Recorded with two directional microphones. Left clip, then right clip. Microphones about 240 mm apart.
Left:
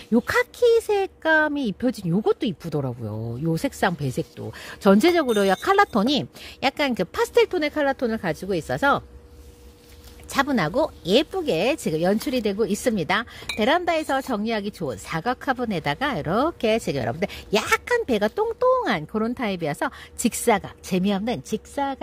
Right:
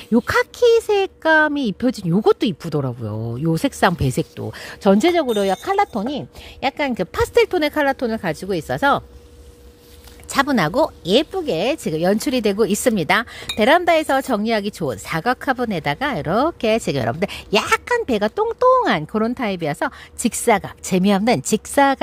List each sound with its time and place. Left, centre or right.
0.1 s speech: centre
10.3 s a woman's voice: centre